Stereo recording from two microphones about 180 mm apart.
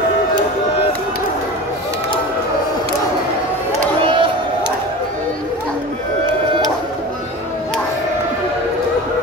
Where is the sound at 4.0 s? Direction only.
30° right (ahead or behind).